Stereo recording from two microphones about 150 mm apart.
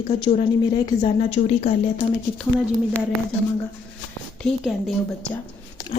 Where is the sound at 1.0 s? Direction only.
50° left (ahead or behind).